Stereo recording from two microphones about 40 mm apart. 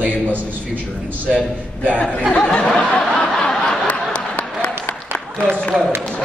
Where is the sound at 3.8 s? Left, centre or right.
Left.